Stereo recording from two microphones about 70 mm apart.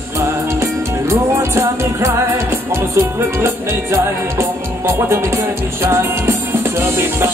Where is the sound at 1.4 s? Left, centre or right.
Right.